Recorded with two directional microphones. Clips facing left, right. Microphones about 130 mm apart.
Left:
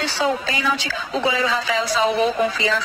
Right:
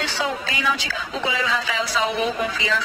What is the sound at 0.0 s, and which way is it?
A man's voice, 35° left (ahead or behind).